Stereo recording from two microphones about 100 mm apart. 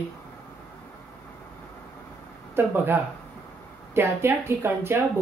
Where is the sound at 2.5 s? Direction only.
20° right (ahead or behind).